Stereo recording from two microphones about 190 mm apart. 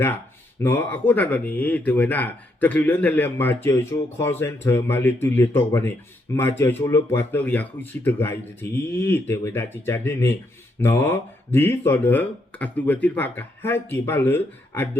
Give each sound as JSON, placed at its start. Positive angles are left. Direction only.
{"t": 0.6, "sound": "speech", "side_deg": 10}